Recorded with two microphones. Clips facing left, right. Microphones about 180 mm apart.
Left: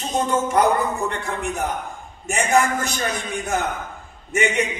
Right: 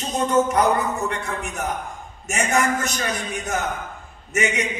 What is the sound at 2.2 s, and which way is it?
Music, 30° left (ahead or behind).